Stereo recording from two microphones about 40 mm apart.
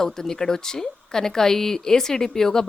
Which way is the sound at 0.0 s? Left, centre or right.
Centre.